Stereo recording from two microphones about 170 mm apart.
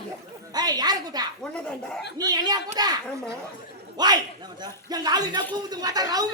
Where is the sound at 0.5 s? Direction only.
25° right (ahead or behind).